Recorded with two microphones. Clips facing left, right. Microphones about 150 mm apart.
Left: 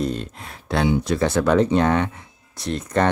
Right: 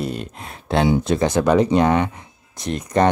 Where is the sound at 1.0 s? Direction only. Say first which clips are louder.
Right 2 dB; 20° right (ahead or behind).